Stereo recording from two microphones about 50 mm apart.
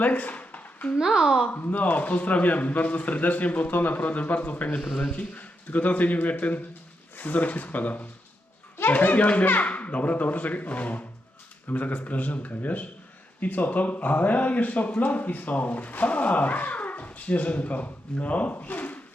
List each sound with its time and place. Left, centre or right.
0.0 s a sound: left
0.9 s a child's voice: centre
1.5 s speech: left